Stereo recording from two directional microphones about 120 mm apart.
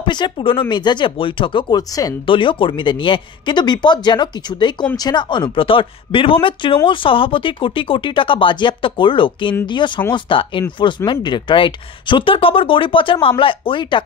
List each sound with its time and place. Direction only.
0.0 s speech: 40° left (ahead or behind)
2.2 s speech: 45° left (ahead or behind)